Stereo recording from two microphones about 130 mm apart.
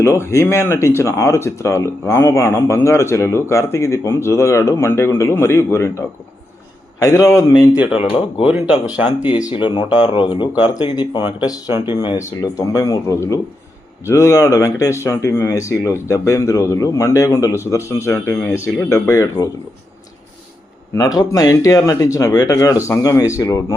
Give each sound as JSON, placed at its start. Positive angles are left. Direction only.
{"t": 0.0, "sound": "speech", "side_deg": 20}
{"t": 7.0, "sound": "speech", "side_deg": 25}
{"t": 7.9, "sound": "speech", "side_deg": 45}
{"t": 8.4, "sound": "speech", "side_deg": -10}
{"t": 9.4, "sound": "speech", "side_deg": 35}
{"t": 12.1, "sound": "speech", "side_deg": 25}
{"t": 20.9, "sound": "speech", "side_deg": 30}